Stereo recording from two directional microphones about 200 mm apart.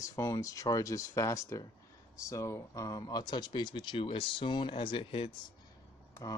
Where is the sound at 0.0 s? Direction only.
15° left (ahead or behind).